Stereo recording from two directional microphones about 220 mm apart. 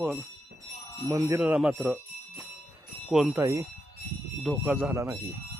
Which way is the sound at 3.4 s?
15° right (ahead or behind).